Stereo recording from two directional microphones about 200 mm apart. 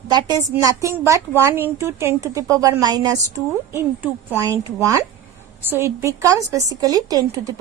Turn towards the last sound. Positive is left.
turn(degrees=-20)  # may be behind; listen again after turning